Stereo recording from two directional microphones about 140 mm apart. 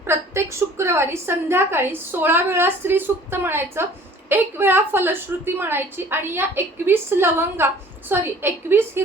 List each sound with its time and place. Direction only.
0.0 s a woman's voice: 15° right (ahead or behind)